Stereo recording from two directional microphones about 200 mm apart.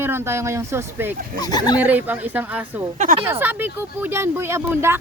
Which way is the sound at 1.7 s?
10° right (ahead or behind).